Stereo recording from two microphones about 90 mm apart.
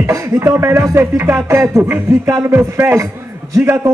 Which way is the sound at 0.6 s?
30° right (ahead or behind).